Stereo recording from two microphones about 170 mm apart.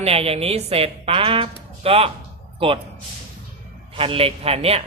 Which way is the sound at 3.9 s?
30° right (ahead or behind).